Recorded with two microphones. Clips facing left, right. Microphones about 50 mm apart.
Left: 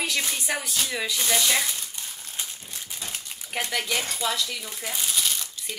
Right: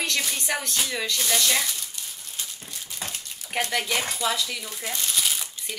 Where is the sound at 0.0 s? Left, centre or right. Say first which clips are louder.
Even; centre.